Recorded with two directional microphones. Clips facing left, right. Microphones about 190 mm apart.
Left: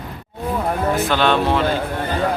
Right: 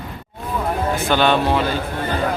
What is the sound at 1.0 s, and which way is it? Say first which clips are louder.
Speech: right 3 dB; 5° right (ahead or behind).